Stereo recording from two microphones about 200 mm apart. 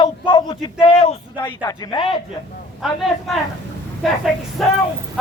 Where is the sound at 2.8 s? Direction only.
Centre (ahead or behind).